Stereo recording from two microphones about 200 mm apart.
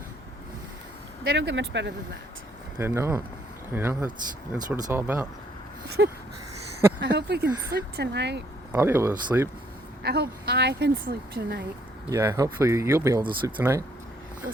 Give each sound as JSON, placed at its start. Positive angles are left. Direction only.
{"t": 1.4, "sound": "speech", "side_deg": -65}
{"t": 2.7, "sound": "speech", "side_deg": -10}
{"t": 6.0, "sound": "a sound", "side_deg": -70}
{"t": 7.0, "sound": "speech", "side_deg": -55}
{"t": 8.7, "sound": "speech", "side_deg": -10}
{"t": 10.0, "sound": "speech", "side_deg": -55}
{"t": 12.1, "sound": "speech", "side_deg": -15}